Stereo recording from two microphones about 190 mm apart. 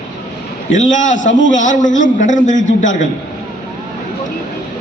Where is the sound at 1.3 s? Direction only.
75° left (ahead or behind).